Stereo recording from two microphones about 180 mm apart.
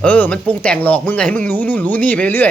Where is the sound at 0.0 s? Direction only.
5° left (ahead or behind).